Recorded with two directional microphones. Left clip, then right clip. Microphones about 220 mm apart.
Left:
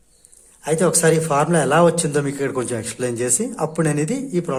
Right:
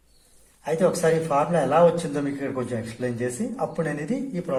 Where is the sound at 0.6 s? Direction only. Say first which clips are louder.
Left 4 dB; 50° left (ahead or behind).